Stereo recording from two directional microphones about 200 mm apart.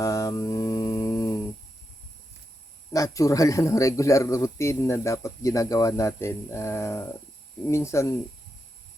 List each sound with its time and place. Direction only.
0.0 s mantra: 15° left (ahead or behind)
2.9 s speech: 15° left (ahead or behind)